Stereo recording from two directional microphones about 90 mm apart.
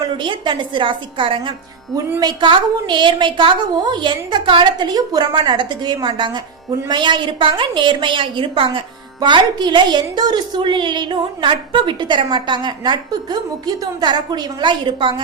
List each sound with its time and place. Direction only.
0.0 s a woman's voice: 60° right (ahead or behind)
2.1 s a woman's voice: 50° right (ahead or behind); by 8.8 s 70° right (ahead or behind)
9.2 s a woman's voice: 55° right (ahead or behind)